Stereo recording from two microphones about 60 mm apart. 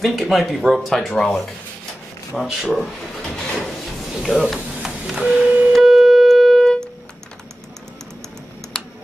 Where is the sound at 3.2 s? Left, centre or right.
Centre.